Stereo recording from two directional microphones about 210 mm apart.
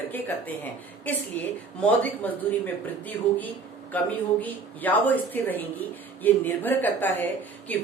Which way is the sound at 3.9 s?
10° left (ahead or behind).